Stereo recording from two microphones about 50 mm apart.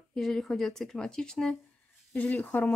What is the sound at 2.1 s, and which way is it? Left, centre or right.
Speech, left.